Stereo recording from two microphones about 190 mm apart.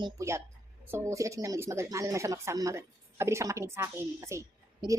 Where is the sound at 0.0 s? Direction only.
15° right (ahead or behind).